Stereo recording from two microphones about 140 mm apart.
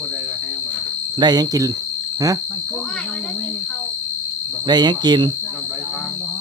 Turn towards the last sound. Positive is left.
turn(degrees=-30)  # may be behind; listen again after turning